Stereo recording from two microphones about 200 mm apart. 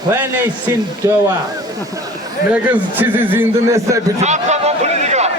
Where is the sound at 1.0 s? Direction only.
15° right (ahead or behind).